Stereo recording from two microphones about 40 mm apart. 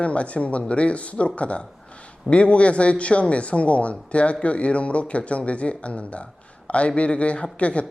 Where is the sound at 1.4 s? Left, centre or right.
Left.